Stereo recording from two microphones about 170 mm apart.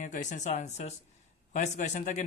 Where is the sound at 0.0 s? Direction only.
45° left (ahead or behind).